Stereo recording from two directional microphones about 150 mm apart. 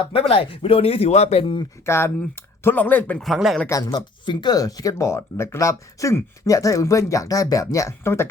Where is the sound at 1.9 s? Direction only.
15° left (ahead or behind); by 3.7 s centre (ahead or behind).